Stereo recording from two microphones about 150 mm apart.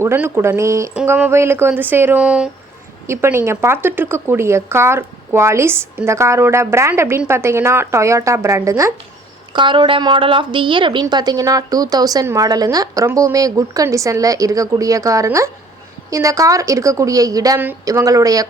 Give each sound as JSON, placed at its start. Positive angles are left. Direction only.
{"t": 0.0, "sound": "speech", "side_deg": -15}
{"t": 3.1, "sound": "a woman's voice", "side_deg": -15}
{"t": 9.5, "sound": "a woman's voice", "side_deg": -30}